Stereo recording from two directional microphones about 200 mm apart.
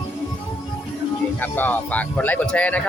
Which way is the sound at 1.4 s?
10° left (ahead or behind).